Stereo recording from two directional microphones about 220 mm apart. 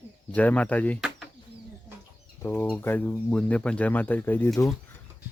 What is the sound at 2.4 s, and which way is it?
Speech, 5° left (ahead or behind).